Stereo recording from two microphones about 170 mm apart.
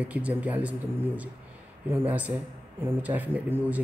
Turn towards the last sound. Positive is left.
turn(degrees=-10)  # may be behind; listen again after turning